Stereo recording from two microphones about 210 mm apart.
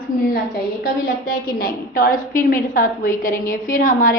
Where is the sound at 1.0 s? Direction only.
40° left (ahead or behind).